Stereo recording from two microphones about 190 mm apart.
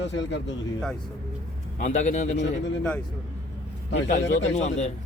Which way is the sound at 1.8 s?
40° left (ahead or behind).